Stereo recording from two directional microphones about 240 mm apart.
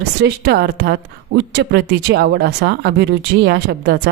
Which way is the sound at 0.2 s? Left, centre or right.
Right.